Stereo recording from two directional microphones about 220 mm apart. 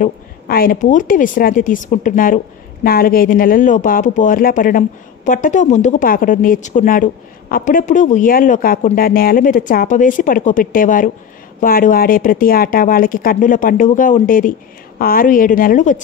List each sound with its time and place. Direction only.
0.0 s speech: 40° left (ahead or behind)